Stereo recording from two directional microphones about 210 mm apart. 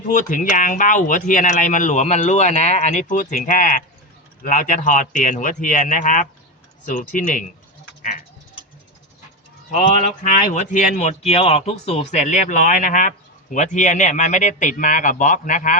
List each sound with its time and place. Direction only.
0.1 s a man's voice: 40° left (ahead or behind)
9.7 s a man's voice: 35° left (ahead or behind)